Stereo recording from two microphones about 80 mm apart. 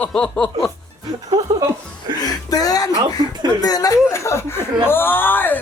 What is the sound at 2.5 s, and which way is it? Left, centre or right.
Speech, left.